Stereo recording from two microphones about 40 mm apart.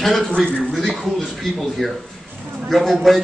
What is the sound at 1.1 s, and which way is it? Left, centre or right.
A man's voice, centre.